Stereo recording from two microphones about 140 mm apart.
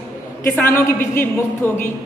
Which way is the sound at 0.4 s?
15° left (ahead or behind).